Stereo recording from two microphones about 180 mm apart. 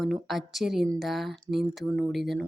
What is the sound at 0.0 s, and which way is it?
A woman's voice, centre (ahead or behind).